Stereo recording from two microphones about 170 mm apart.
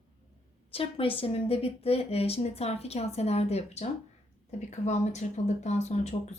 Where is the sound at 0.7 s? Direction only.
35° left (ahead or behind).